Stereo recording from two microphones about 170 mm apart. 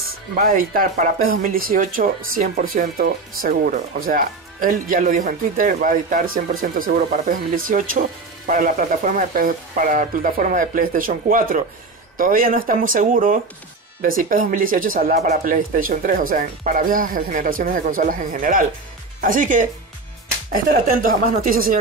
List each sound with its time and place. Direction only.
0.4 s speech: 55° right (ahead or behind)